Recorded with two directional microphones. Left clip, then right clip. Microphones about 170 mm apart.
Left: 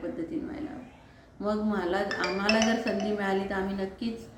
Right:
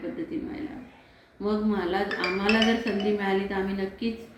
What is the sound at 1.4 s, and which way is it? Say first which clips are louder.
Speech: right 2 dB; 20° left (ahead or behind).